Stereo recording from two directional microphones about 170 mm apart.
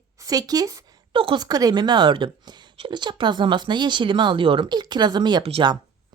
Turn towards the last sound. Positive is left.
turn(degrees=-25)  # may be behind; listen again after turning